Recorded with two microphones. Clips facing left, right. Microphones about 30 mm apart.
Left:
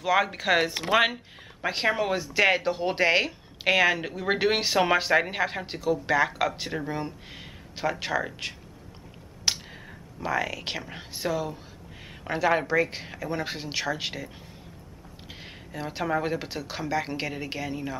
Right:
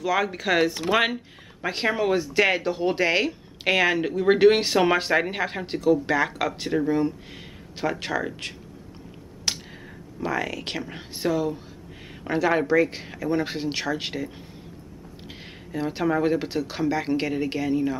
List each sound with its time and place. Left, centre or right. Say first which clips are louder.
0.0 s speech: even; centre
9.5 s a sound: left 1 dB; centre
10.2 s speech: right 1 dB; centre
15.7 s speech: right 4 dB; centre